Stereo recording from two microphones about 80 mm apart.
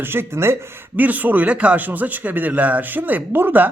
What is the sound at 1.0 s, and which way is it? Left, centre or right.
Speech, right.